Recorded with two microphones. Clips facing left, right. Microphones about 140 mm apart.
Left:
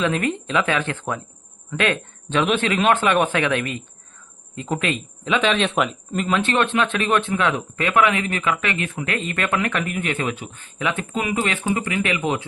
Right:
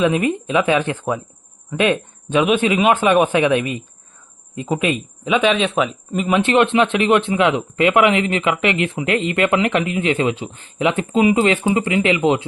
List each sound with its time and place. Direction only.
0.0 s speech: 15° right (ahead or behind)
6.3 s speech: 20° right (ahead or behind)